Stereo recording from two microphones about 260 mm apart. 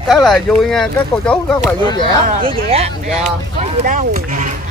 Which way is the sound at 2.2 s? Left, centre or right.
Right.